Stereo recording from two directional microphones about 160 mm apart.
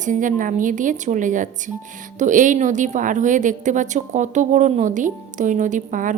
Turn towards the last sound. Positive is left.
turn(degrees=-55)  # may be behind; listen again after turning